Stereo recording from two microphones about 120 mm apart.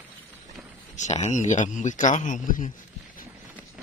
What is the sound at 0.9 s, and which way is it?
A man's voice, 75° left (ahead or behind).